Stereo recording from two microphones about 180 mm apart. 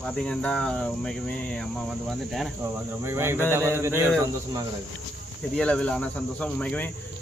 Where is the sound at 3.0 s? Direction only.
15° right (ahead or behind).